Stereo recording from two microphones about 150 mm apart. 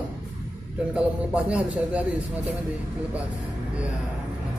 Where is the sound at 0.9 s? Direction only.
10° right (ahead or behind).